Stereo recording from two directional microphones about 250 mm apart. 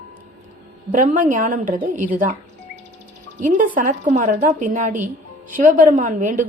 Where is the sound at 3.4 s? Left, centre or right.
Right.